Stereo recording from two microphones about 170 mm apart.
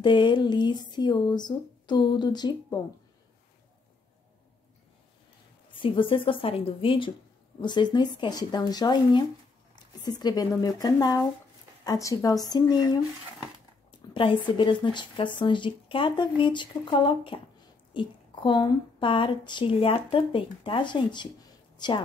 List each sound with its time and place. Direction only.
0.0 s speech: 30° left (ahead or behind)
5.8 s a woman's voice: 30° left (ahead or behind)
14.1 s speech: 30° left (ahead or behind)